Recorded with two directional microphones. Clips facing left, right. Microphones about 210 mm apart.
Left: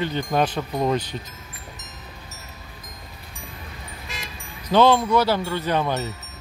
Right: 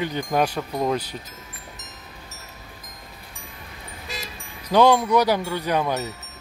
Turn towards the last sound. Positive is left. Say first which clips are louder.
# even
turn(degrees=-5)  # may be behind; listen again after turning